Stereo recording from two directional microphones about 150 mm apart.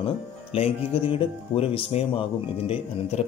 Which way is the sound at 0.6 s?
40° left (ahead or behind).